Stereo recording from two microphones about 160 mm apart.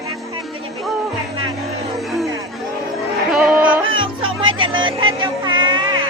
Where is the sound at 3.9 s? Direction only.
30° right (ahead or behind).